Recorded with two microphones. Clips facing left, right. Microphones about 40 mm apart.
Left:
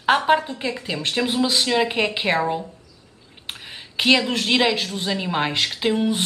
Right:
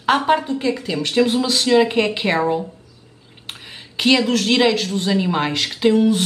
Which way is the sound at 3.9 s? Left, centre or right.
Centre.